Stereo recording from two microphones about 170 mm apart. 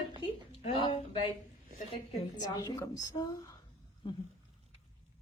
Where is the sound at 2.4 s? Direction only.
20° left (ahead or behind).